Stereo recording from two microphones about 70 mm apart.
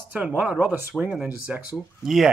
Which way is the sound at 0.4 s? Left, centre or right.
Right.